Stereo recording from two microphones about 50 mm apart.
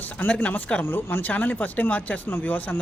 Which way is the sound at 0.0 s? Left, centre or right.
Left.